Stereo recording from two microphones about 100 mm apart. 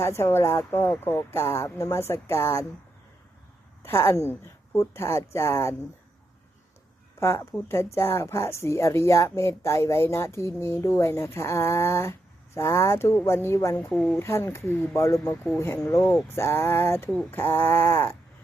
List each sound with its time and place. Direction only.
0.0 s speech: 25° left (ahead or behind)
3.8 s speech: 30° left (ahead or behind)
7.2 s speech: 30° left (ahead or behind)
13.9 s speech: 5° left (ahead or behind)
14.2 s speech: 25° left (ahead or behind)